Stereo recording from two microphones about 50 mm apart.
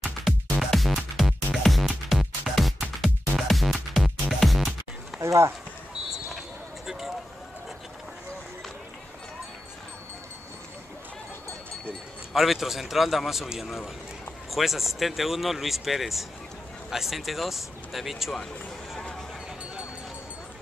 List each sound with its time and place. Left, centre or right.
0.0 s music: centre
5.2 s speech: right
6.1 s basketball bounce: centre
12.3 s speech: centre